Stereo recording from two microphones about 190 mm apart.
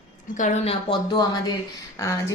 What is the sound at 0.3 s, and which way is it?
A woman's voice, 40° left (ahead or behind).